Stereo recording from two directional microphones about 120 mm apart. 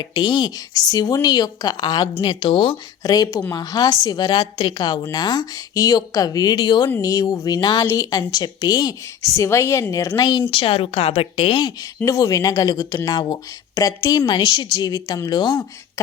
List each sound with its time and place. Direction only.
0.0 s a woman's voice: 40° left (ahead or behind)
3.0 s a woman's voice: 30° left (ahead or behind)
4.4 s a woman's voice: 55° left (ahead or behind)
5.1 s a woman's voice: 35° left (ahead or behind)
10.5 s a woman's voice: 50° left (ahead or behind)
12.0 s a woman's voice: 30° left (ahead or behind)